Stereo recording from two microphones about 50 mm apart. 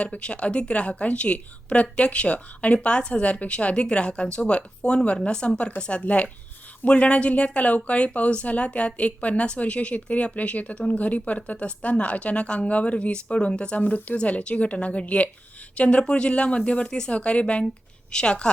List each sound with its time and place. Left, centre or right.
0.0 s a woman's voice: left